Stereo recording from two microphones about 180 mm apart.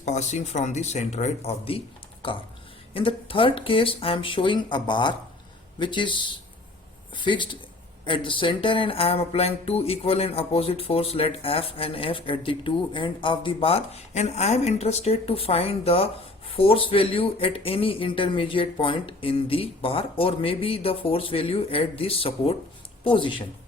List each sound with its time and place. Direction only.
0.0 s speech: 40° left (ahead or behind)
2.9 s speech: 30° left (ahead or behind)